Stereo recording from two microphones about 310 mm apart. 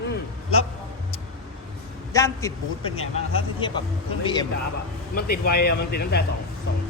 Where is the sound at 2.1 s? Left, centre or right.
Centre.